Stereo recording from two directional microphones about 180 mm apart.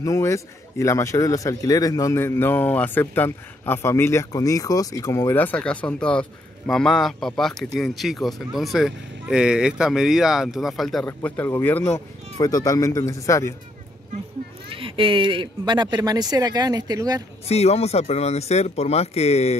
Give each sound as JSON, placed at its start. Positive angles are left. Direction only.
{"t": 0.0, "sound": "a man's voice", "side_deg": 15}
{"t": 14.7, "sound": "speech", "side_deg": -30}
{"t": 17.5, "sound": "speech", "side_deg": 35}